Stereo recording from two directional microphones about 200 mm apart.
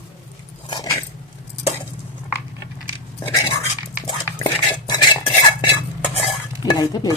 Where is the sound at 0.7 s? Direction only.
20° left (ahead or behind).